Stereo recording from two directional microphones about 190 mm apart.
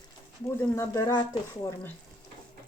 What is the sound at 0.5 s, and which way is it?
Speech, 15° left (ahead or behind).